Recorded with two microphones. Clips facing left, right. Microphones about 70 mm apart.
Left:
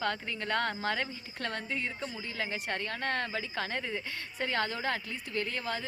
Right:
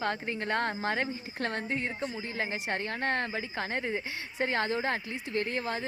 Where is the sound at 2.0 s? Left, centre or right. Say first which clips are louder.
Right 3 dB; right.